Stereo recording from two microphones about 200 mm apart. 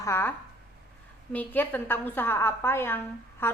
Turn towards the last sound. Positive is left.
turn(degrees=10)  # may be behind; listen again after turning